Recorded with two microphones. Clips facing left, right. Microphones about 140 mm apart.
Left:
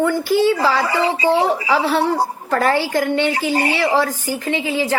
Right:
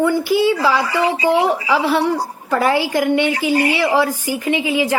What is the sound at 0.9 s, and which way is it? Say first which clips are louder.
Speech: right 1 dB; 25° left (ahead or behind).